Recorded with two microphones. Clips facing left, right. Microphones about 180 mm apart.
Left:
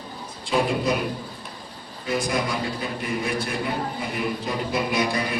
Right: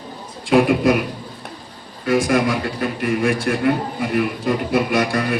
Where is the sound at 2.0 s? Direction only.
90° right.